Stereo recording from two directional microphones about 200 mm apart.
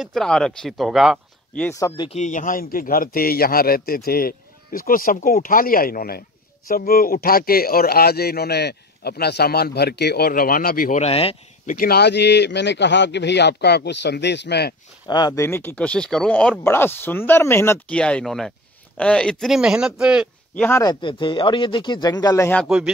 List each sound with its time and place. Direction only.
0.0 s speech: centre (ahead or behind)
1.8 s speech: 20° left (ahead or behind)
2.0 s speech: 35° left (ahead or behind)
11.0 s speech: 30° left (ahead or behind)
11.7 s a man's voice: 50° left (ahead or behind)
15.0 s speech: 20° left (ahead or behind); by 20.2 s 5° right (ahead or behind)
20.5 s speech: 5° left (ahead or behind)
20.8 s speech: 25° left (ahead or behind)
22.7 s speech: 5° right (ahead or behind)